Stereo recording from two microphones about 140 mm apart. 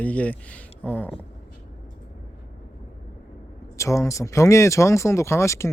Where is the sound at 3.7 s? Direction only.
20° left (ahead or behind).